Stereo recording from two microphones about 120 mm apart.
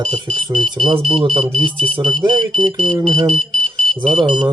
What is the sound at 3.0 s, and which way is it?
Speech, 50° right (ahead or behind).